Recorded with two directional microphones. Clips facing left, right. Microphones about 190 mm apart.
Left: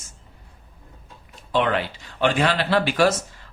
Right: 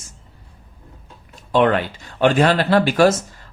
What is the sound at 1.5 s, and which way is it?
Speech, 50° right (ahead or behind).